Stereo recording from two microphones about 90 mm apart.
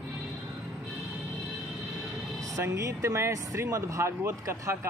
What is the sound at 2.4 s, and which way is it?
Speech, 35° right (ahead or behind).